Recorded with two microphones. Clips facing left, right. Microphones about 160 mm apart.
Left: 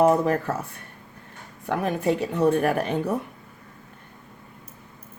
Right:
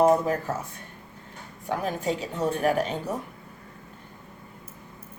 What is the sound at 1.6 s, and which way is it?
A woman's voice, 60° left (ahead or behind).